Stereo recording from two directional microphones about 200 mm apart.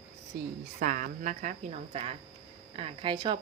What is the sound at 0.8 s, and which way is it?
A woman's voice, 40° right (ahead or behind).